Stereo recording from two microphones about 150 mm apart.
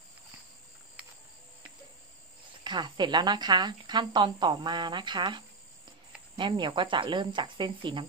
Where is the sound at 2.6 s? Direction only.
30° right (ahead or behind).